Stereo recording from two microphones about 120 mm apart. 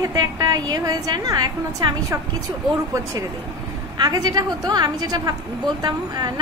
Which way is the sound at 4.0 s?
35° right (ahead or behind).